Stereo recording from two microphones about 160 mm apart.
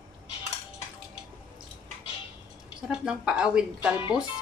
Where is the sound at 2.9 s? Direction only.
5° right (ahead or behind).